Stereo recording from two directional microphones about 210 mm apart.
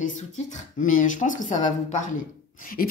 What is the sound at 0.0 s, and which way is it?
Speech, 35° left (ahead or behind).